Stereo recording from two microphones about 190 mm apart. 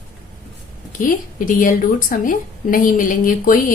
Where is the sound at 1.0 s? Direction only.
45° left (ahead or behind).